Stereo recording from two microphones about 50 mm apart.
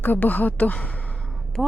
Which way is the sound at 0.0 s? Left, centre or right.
Left.